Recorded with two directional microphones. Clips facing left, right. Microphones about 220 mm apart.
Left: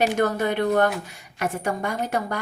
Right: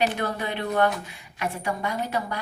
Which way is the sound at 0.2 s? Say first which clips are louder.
Left 7 dB; 45° left (ahead or behind).